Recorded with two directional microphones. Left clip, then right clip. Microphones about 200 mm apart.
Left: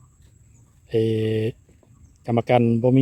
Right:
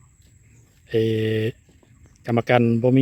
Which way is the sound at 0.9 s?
5° right (ahead or behind).